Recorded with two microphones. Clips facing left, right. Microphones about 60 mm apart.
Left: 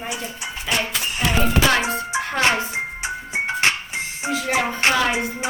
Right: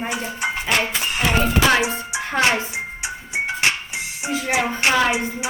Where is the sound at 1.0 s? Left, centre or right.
Right.